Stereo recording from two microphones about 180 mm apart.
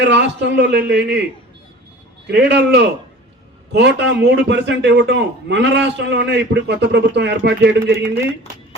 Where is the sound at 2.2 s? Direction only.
70° right (ahead or behind).